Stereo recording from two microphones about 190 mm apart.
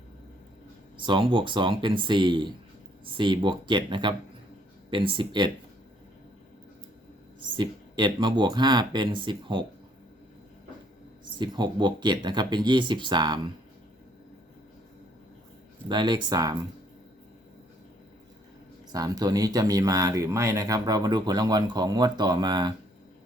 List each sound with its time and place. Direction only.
0.9 s speech: 25° right (ahead or behind)
7.5 s speech: 25° right (ahead or behind)
11.3 s speech: 25° right (ahead or behind)
15.9 s speech: 25° right (ahead or behind)
18.9 s speech: 20° right (ahead or behind)